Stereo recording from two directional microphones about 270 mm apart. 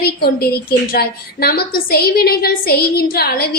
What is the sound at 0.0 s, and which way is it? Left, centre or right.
A woman's voice, left.